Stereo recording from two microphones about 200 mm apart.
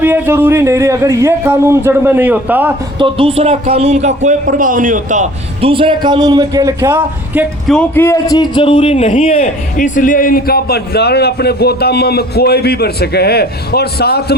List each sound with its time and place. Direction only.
0.0 s a man's voice: 10° right (ahead or behind)
3.0 s a man's voice: 25° right (ahead or behind); by 7.4 s 10° right (ahead or behind)
7.7 s a man's voice: 10° left (ahead or behind); by 9.5 s 30° left (ahead or behind)
9.7 s a man's voice: 40° left (ahead or behind)